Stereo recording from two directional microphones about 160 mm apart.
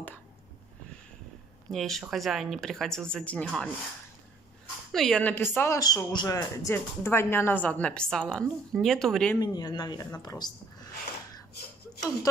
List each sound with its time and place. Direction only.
1.7 s speech: centre (ahead or behind)
4.9 s speech: 5° left (ahead or behind)
9.4 s speech: 25° left (ahead or behind)